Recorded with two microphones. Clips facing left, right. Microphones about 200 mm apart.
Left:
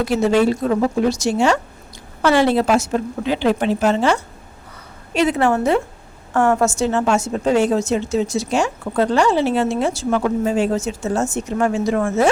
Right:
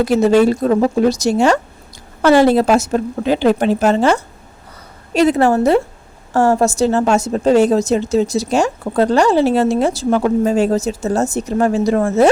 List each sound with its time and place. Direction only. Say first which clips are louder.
0.0 s a woman's voice: right 4 dB; 40° right (ahead or behind)